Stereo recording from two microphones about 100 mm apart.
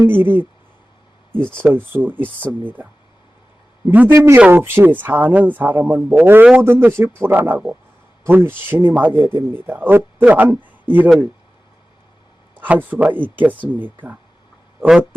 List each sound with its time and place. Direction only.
0.0 s speech: 20° right (ahead or behind)
1.5 s speech: 20° right (ahead or behind)
3.8 s speech: 20° right (ahead or behind)
12.5 s speech: 15° right (ahead or behind)